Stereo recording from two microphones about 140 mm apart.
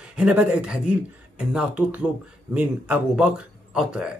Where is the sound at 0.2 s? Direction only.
10° right (ahead or behind).